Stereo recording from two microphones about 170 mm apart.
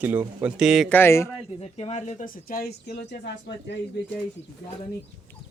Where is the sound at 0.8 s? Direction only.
10° left (ahead or behind).